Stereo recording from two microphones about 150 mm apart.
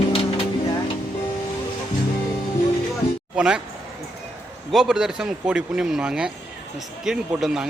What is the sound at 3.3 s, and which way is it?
Speech, 5° right (ahead or behind).